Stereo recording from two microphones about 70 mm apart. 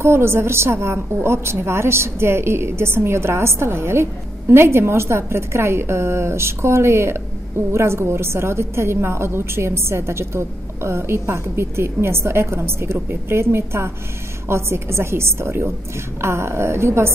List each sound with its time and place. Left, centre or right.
0.0 s a woman's voice: right